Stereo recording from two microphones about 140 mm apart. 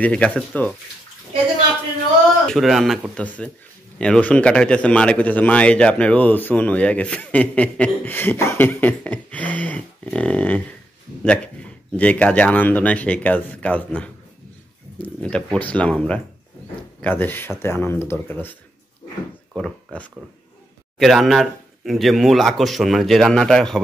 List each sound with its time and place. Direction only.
0.0 s speech: 10° left (ahead or behind)
2.4 s speech: centre (ahead or behind)
15.2 s speech: 5° left (ahead or behind)